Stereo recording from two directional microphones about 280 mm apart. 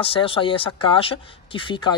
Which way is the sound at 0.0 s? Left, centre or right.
Centre.